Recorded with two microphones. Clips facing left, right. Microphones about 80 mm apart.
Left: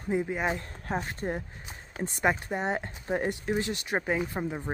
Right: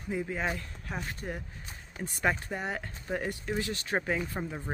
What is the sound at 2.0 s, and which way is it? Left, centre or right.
Speech, left.